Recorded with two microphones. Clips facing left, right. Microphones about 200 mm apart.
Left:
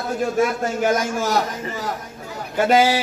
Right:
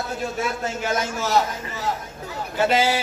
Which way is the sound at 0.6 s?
45° left (ahead or behind).